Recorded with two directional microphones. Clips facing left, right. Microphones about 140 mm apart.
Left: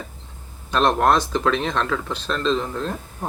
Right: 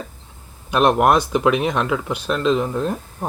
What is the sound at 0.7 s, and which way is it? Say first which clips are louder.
Speech: right 3 dB; 10° right (ahead or behind).